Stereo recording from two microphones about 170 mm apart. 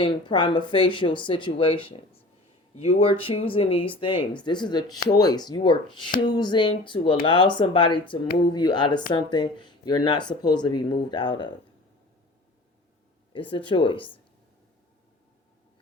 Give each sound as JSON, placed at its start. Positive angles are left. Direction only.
{"t": 0.0, "sound": "speech", "side_deg": 30}
{"t": 13.5, "sound": "speech", "side_deg": 30}